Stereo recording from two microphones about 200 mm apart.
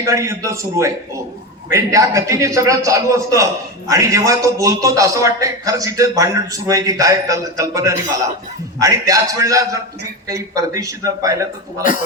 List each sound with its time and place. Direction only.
0.0 s a man's voice: 15° right (ahead or behind)